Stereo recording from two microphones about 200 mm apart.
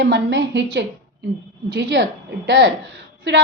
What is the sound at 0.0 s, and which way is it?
A woman's voice, 60° right (ahead or behind).